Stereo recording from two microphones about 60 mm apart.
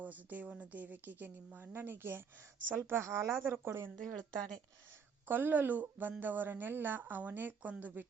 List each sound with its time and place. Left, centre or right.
0.0 s a woman's voice: right
3.4 s speech: right
4.0 s speech: centre
5.3 s speech: right